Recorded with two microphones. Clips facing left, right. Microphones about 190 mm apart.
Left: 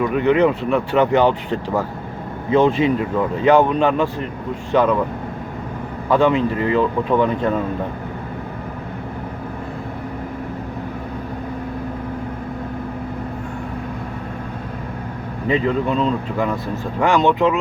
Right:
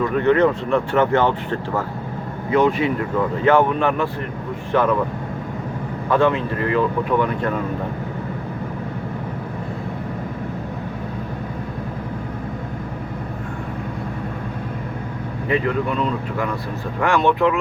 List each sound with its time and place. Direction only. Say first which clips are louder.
0.0 s speech: left 1 dB; 15° left (ahead or behind)
6.1 s speech: left 2 dB; 15° left (ahead or behind)
15.4 s speech: left 2 dB; 25° left (ahead or behind)